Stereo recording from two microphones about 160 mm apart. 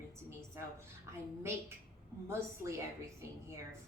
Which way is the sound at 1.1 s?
15° right (ahead or behind).